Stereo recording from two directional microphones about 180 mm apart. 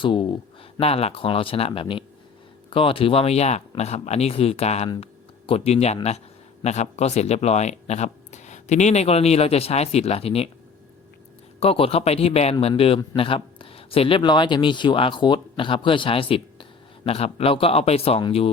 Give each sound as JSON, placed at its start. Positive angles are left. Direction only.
{"t": 0.0, "sound": "speech", "side_deg": 25}
{"t": 11.6, "sound": "speech", "side_deg": 30}